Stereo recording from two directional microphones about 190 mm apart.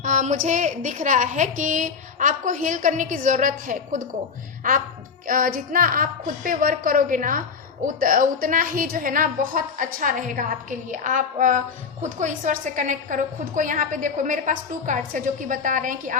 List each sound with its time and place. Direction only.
0.0 s a woman's voice: 40° right (ahead or behind)
5.2 s a woman's voice: 45° right (ahead or behind)